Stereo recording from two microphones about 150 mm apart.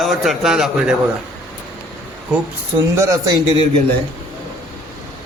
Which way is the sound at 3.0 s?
20° right (ahead or behind).